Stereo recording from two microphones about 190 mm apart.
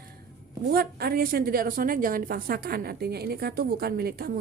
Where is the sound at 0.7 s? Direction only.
55° right (ahead or behind).